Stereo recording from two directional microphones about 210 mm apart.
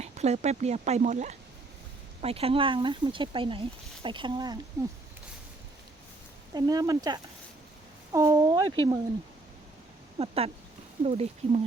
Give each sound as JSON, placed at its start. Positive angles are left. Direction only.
{"t": 0.0, "sound": "speech", "side_deg": -30}
{"t": 6.5, "sound": "speech", "side_deg": -15}
{"t": 10.2, "sound": "speech", "side_deg": -30}